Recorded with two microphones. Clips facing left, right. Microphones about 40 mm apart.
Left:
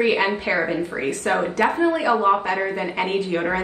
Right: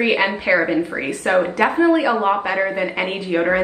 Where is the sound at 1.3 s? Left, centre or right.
Right.